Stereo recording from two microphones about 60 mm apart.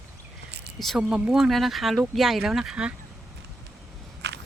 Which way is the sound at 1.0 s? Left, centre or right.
Centre.